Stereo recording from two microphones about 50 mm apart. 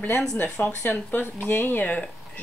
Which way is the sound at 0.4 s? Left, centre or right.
Left.